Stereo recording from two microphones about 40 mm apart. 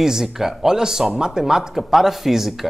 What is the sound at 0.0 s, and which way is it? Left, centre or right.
Speech, centre.